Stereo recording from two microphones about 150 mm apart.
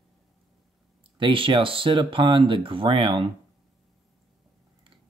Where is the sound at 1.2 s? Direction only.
35° right (ahead or behind).